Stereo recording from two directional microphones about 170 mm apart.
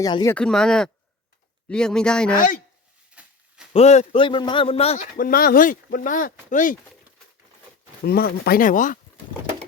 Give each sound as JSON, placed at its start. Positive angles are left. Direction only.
{"t": 0.0, "sound": "speech", "side_deg": 20}
{"t": 0.3, "sound": "speech", "side_deg": 5}
{"t": 2.3, "sound": "speech", "side_deg": 50}
{"t": 3.2, "sound": "a sound", "side_deg": -10}
{"t": 3.7, "sound": "a man's voice", "side_deg": 40}
{"t": 5.1, "sound": "speech", "side_deg": 60}
{"t": 8.0, "sound": "speech", "side_deg": 65}